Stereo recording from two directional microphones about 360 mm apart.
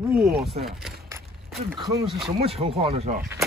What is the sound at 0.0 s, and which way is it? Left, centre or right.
Speech, centre.